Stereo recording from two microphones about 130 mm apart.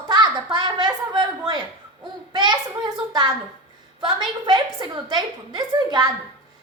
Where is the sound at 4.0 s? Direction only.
35° right (ahead or behind).